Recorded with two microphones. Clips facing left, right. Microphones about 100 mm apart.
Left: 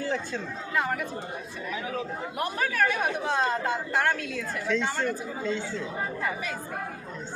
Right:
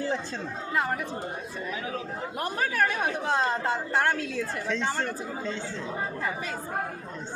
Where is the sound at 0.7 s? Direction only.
30° right (ahead or behind).